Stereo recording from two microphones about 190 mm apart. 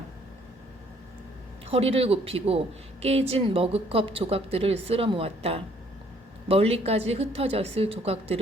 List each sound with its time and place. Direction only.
1.7 s speech: 30° right (ahead or behind)